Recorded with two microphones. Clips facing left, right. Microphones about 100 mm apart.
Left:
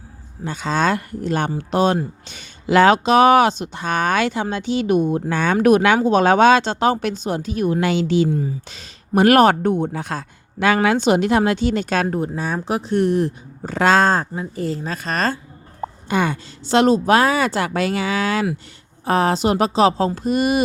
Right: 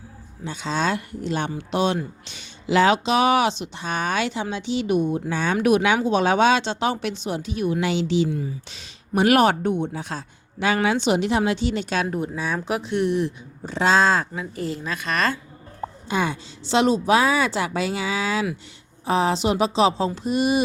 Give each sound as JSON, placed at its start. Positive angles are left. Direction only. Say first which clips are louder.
{"t": 0.4, "sound": "speech", "louder": "left 5 dB", "side_deg": 50}
{"t": 12.0, "sound": "speech", "louder": "left 3 dB", "side_deg": 35}
{"t": 16.0, "sound": "speech", "louder": "left 4 dB", "side_deg": 60}